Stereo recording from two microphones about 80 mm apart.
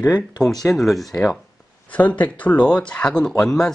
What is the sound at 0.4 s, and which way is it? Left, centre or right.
Speech, centre.